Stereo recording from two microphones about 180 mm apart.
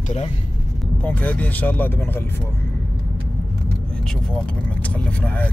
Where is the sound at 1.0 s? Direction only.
10° left (ahead or behind).